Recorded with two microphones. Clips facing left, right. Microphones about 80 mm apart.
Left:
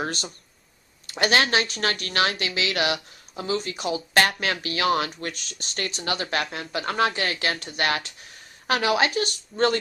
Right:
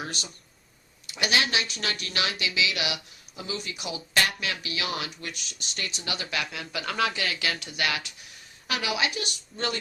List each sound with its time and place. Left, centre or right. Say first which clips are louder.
0.0 s a woman's voice: left 6 dB; left